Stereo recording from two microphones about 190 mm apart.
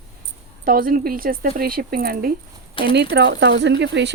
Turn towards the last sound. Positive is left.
turn(degrees=-65)  # may be behind; listen again after turning